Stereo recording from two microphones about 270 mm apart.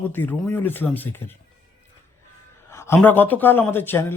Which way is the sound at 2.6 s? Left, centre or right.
Centre.